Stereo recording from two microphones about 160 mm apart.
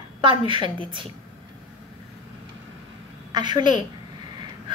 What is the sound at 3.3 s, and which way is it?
Speech, 30° right (ahead or behind).